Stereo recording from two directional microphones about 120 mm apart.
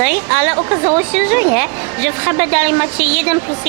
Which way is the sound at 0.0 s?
15° right (ahead or behind).